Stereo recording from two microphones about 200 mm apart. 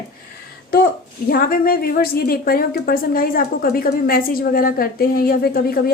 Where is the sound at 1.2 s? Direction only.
45° left (ahead or behind).